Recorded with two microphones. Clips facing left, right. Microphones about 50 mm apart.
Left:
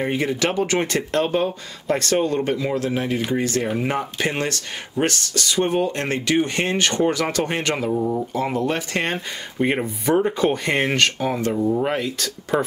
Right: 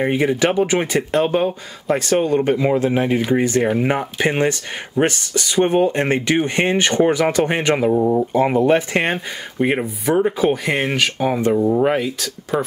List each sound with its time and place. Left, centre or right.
0.0 s speech: centre
9.6 s speech: centre
11.1 s speech: centre